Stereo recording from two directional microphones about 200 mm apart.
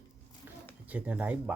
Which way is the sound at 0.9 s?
5° right (ahead or behind).